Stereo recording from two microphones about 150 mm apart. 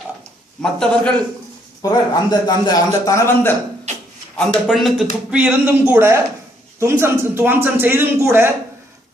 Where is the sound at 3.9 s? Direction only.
50° right (ahead or behind).